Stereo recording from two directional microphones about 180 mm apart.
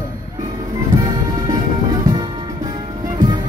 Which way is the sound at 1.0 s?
20° right (ahead or behind).